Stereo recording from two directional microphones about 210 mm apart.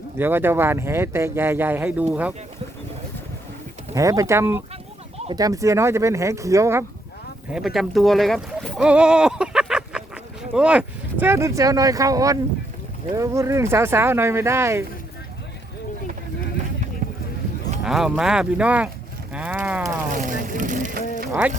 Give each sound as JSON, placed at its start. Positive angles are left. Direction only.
{"t": 0.2, "sound": "speech", "side_deg": -10}
{"t": 3.9, "sound": "speech", "side_deg": -15}
{"t": 7.5, "sound": "speech", "side_deg": 0}
{"t": 17.0, "sound": "boat", "side_deg": -35}
{"t": 17.8, "sound": "speech", "side_deg": 0}
{"t": 19.3, "sound": "livestock", "side_deg": -5}
{"t": 20.2, "sound": "vehicle", "side_deg": -40}
{"t": 21.2, "sound": "a sound", "side_deg": -5}